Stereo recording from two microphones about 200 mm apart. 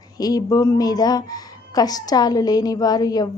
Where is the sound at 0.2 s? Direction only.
20° left (ahead or behind).